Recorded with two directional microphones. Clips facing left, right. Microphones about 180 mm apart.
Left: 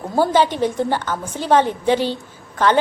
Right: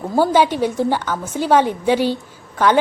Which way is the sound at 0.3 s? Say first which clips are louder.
Right 1 dB; 10° right (ahead or behind).